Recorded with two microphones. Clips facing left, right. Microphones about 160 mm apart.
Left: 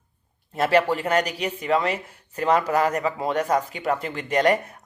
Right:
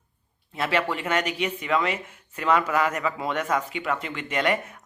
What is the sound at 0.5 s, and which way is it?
A man's voice, 40° left (ahead or behind).